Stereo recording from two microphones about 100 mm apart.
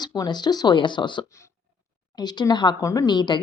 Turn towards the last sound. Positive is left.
turn(degrees=45)  # may be behind; listen again after turning